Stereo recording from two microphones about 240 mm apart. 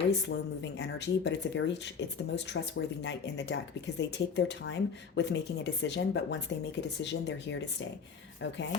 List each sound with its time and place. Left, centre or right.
0.3 s speech: left